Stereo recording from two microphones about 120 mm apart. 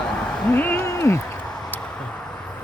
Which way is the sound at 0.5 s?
15° left (ahead or behind).